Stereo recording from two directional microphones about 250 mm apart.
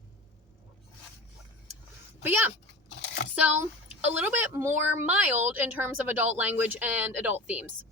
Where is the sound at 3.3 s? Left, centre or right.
Centre.